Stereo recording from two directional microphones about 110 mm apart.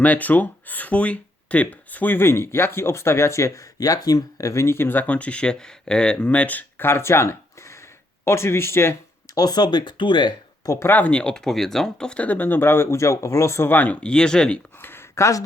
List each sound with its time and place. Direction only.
0.0 s speech: 15° left (ahead or behind)
9.3 s speech: 35° left (ahead or behind)
10.7 s speech: 25° left (ahead or behind); by 14.6 s 5° left (ahead or behind)
14.8 s a sound: 20° left (ahead or behind)